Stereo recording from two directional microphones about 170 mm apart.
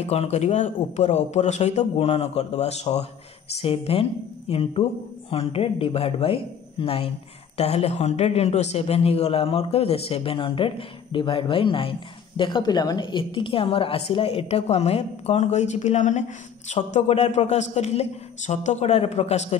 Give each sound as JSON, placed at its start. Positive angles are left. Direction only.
{"t": 0.0, "sound": "a woman's voice", "side_deg": 40}